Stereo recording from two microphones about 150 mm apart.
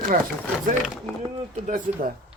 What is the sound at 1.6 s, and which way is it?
Speech, 60° right (ahead or behind).